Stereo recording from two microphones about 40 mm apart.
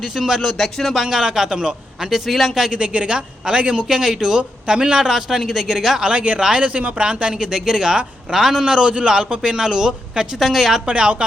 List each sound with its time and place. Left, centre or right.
0.0 s a man's voice: centre
0.6 s speech: centre
1.0 s a man's voice: centre
2.0 s a man's voice: centre
2.7 s speech: right
3.8 s a man's voice: centre
6.0 s speech: right
6.9 s a man's voice: right; by 10.8 s centre
10.8 s speech: right